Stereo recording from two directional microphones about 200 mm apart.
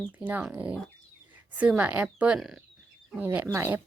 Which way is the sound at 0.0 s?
5° right (ahead or behind).